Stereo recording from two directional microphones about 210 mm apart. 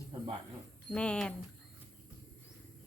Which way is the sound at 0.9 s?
5° left (ahead or behind).